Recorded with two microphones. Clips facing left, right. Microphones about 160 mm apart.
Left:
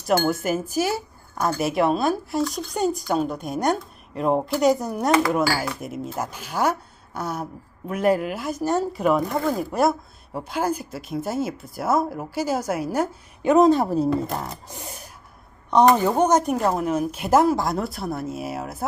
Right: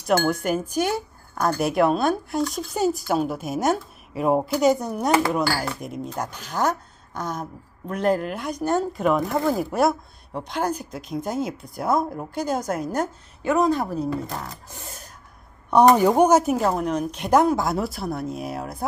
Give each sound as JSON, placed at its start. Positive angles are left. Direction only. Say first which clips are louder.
{"t": 0.0, "sound": "speech", "louder": "even", "side_deg": 0}
{"t": 13.5, "sound": "a woman's voice", "louder": "left 5 dB", "side_deg": 25}
{"t": 14.8, "sound": "gasp", "louder": "left 2 dB", "side_deg": 15}
{"t": 15.7, "sound": "speech", "louder": "right 2 dB", "side_deg": -10}